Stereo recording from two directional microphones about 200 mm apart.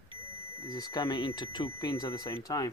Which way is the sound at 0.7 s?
20° left (ahead or behind).